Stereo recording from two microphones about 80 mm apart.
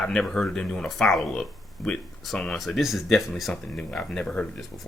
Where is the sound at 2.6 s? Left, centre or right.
Centre.